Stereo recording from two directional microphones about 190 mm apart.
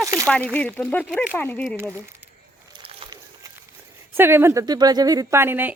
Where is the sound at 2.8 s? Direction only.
30° right (ahead or behind).